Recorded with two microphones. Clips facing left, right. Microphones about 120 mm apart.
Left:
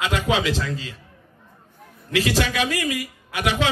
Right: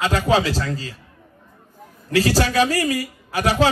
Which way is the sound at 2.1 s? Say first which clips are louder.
Right 4 dB; 35° right (ahead or behind).